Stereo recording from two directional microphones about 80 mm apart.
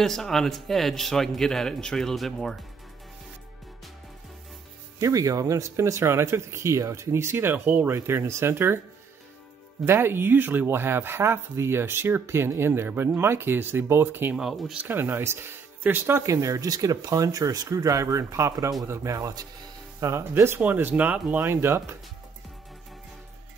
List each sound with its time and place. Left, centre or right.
0.0 s a man's voice: centre
4.9 s speech: right
9.8 s speech: right
14.3 s a man's voice: centre
14.8 s speech: right
16.3 s speech: right